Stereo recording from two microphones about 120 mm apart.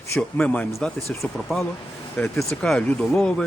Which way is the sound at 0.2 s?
10° left (ahead or behind).